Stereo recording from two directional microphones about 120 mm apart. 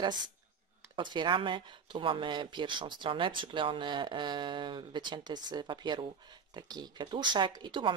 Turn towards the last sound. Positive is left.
turn(degrees=-40)  # may be behind; listen again after turning